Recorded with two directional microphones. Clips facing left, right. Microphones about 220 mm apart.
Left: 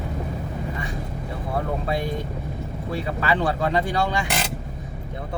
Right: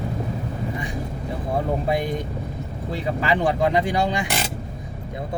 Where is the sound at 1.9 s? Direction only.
15° right (ahead or behind).